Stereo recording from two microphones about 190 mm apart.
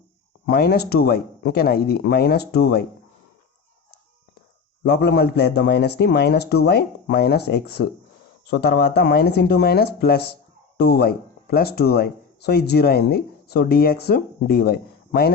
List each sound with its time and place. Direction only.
0.4 s a man's voice: 55° left (ahead or behind)
4.8 s a man's voice: 60° left (ahead or behind)